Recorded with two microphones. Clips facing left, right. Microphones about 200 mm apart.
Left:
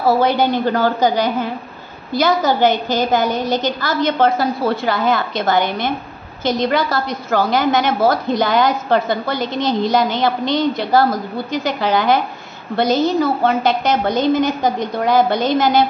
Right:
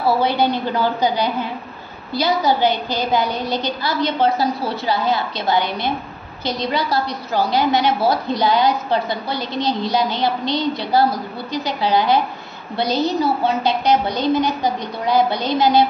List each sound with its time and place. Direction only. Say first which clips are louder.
0.0 s a woman's voice: left 3 dB; 45° left (ahead or behind)